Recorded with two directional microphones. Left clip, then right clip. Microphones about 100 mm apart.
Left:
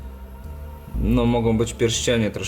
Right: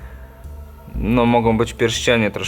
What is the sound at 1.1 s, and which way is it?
Speech, 20° right (ahead or behind).